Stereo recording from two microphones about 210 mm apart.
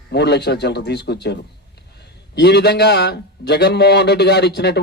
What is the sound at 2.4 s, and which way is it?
A man's voice, 50° left (ahead or behind).